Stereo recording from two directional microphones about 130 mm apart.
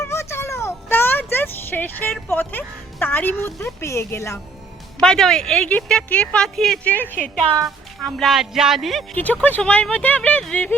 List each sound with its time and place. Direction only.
0.0 s a sound: 20° left (ahead or behind)
4.9 s speech: 5° left (ahead or behind)
8.0 s speech: centre (ahead or behind)
9.1 s speech: 10° left (ahead or behind)